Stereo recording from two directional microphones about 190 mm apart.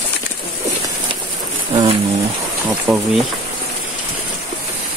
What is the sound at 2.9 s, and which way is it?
Speech, 10° right (ahead or behind).